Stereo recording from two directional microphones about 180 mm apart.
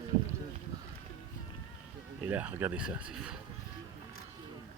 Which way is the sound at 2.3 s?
10° right (ahead or behind).